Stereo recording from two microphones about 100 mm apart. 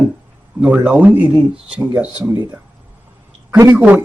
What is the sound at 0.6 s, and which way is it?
Speech, 15° right (ahead or behind).